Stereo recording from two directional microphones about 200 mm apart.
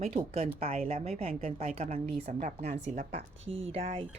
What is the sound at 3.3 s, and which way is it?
Speech, 75° right (ahead or behind).